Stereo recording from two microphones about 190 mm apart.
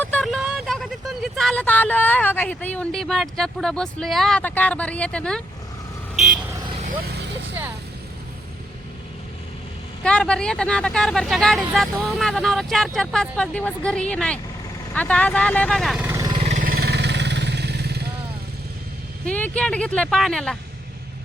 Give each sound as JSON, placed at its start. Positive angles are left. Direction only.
{"t": 0.0, "sound": "speech", "side_deg": 5}
{"t": 6.7, "sound": "vehicle", "side_deg": -35}
{"t": 7.0, "sound": "vehicle", "side_deg": -60}
{"t": 10.0, "sound": "speech", "side_deg": 5}
{"t": 16.0, "sound": "vehicle", "side_deg": -15}
{"t": 16.3, "sound": "vehicle", "side_deg": -30}
{"t": 16.6, "sound": "motorcycle", "side_deg": -50}
{"t": 19.2, "sound": "speech", "side_deg": 5}